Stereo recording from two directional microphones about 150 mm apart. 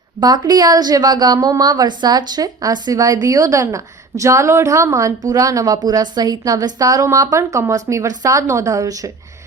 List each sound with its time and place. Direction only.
0.2 s a woman's voice: 25° right (ahead or behind)